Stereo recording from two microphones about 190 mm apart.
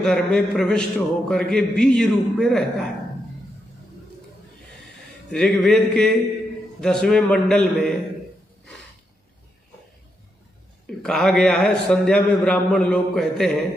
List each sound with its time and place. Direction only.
0.0 s a man's voice: centre (ahead or behind)
5.3 s a man's voice: 5° left (ahead or behind)
10.9 s a man's voice: 5° left (ahead or behind)